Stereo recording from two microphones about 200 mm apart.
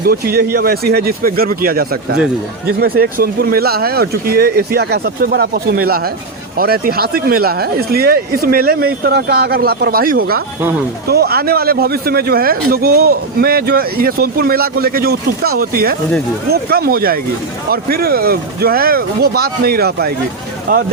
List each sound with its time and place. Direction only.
0.0 s speech: 50° right (ahead or behind)